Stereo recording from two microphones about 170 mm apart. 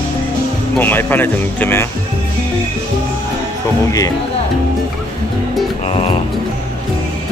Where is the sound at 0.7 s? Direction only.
10° left (ahead or behind).